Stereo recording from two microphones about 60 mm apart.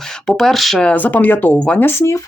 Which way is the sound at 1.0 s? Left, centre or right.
Left.